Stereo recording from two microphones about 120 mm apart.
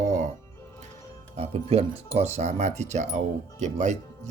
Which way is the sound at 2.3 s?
75° right (ahead or behind).